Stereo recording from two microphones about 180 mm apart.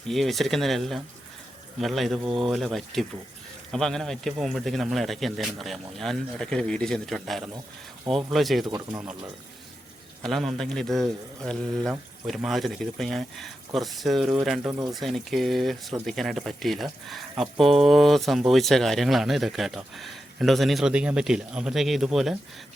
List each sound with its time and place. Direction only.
0.1 s speech: centre (ahead or behind)
8.6 s speech: 25° right (ahead or behind)
10.2 s speech: centre (ahead or behind)